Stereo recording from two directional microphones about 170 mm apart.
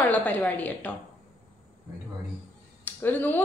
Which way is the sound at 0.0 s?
10° left (ahead or behind).